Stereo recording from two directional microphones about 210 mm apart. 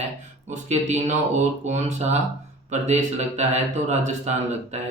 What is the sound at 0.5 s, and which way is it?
Speech, 35° right (ahead or behind).